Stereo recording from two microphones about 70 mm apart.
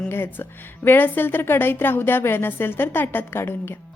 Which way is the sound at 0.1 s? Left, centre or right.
Left.